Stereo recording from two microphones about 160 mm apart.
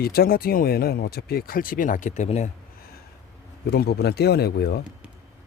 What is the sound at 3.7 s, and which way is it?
Speech, 85° left.